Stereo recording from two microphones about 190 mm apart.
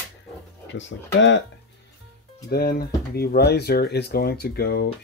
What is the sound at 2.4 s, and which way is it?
Speech, 55° left (ahead or behind).